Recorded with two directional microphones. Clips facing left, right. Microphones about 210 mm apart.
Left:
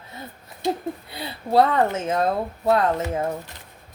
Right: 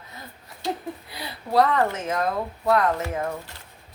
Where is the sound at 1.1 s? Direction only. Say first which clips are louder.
Left 3 dB; 25° left (ahead or behind).